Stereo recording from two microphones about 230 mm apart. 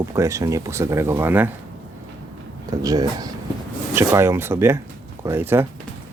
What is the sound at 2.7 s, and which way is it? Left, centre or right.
Speech, centre.